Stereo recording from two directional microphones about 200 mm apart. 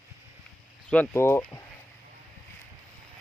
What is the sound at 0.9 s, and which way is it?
Speech, 10° left (ahead or behind).